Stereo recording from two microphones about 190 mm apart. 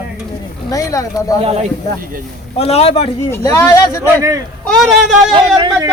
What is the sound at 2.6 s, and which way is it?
Speech, 30° left (ahead or behind).